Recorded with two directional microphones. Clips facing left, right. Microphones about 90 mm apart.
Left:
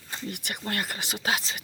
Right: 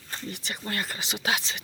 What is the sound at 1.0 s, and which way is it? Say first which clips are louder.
Speech: even; 45° left (ahead or behind).